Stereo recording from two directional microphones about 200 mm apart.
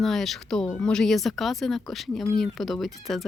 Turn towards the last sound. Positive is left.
turn(degrees=0)  # may be behind; listen again after turning